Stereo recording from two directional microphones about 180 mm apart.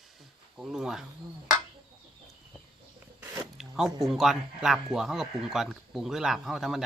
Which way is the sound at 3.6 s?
Centre (ahead or behind).